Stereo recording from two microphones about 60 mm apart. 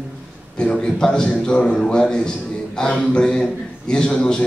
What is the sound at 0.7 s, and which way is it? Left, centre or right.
A man's voice, centre.